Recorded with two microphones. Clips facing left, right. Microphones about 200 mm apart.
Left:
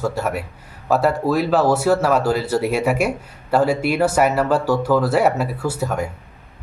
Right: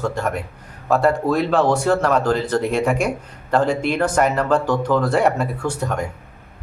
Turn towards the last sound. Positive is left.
turn(degrees=5)  # may be behind; listen again after turning